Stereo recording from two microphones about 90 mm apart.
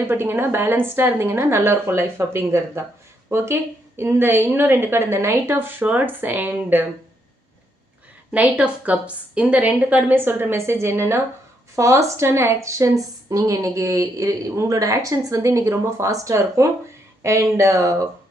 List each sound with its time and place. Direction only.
0.1 s a woman's voice: 25° right (ahead or behind)
8.3 s a woman's voice: 15° right (ahead or behind); by 17.9 s 35° right (ahead or behind)